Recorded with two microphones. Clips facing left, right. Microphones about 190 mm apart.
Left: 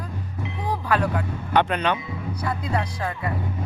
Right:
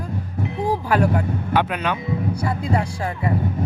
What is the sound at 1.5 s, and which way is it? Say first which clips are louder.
Speech: left 1 dB; 5° right (ahead or behind).